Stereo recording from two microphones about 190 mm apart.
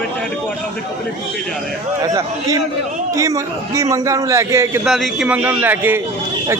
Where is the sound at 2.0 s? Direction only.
20° right (ahead or behind).